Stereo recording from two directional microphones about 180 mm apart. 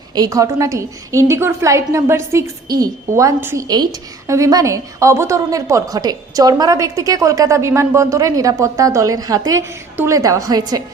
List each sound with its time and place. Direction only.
0.1 s a woman's voice: 20° right (ahead or behind)